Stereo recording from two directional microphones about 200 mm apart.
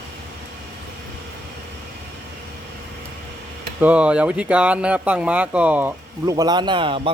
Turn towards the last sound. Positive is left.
turn(degrees=-25)  # may be behind; listen again after turning